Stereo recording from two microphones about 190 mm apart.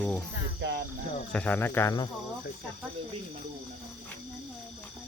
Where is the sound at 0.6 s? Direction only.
70° right (ahead or behind).